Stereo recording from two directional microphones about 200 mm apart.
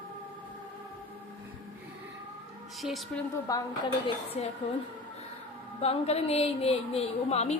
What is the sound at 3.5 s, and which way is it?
Speech, 15° left (ahead or behind).